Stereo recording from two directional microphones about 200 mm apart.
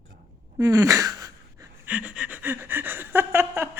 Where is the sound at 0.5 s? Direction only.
15° right (ahead or behind).